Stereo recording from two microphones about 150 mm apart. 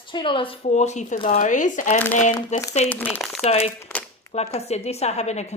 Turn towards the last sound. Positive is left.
turn(degrees=45)  # may be behind; listen again after turning